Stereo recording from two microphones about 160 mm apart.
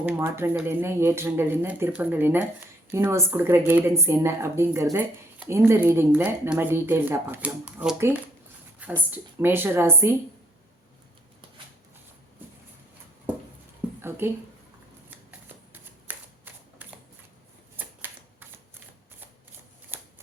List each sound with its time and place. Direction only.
0.0 s speech: 15° right (ahead or behind)
14.2 s speech: 15° right (ahead or behind)
15.3 s shuffling cards: 10° right (ahead or behind)
17.7 s typewriter: 15° right (ahead or behind)
19.9 s shuffling cards: 10° right (ahead or behind)